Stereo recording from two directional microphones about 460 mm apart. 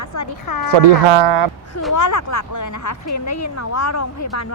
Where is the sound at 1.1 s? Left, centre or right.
Right.